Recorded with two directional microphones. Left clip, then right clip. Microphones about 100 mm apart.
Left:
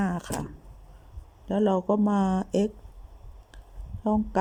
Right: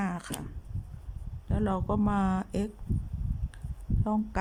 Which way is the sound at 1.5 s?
15° left (ahead or behind).